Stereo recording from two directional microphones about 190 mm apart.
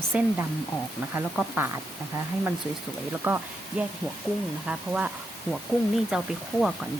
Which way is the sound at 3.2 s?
10° right (ahead or behind).